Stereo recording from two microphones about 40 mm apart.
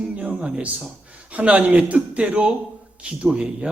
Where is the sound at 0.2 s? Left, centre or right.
Right.